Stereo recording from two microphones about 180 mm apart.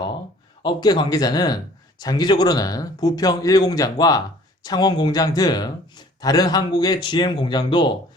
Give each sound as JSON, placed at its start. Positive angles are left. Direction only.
{"t": 0.6, "sound": "speech", "side_deg": 25}